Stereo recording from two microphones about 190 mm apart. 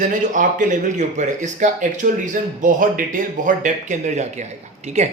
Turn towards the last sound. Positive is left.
turn(degrees=-35)  # may be behind; listen again after turning